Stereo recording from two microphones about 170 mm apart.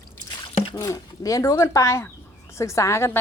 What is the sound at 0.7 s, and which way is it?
Speech, 20° left (ahead or behind).